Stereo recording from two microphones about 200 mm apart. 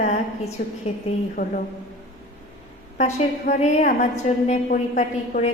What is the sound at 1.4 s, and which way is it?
Speech, 35° left (ahead or behind).